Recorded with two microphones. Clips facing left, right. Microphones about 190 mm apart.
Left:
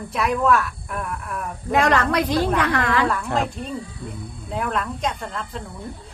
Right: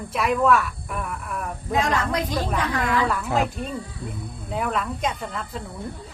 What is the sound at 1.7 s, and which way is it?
A woman's voice, 70° left (ahead or behind).